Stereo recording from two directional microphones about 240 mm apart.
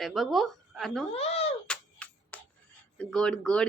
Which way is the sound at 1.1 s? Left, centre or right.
Left.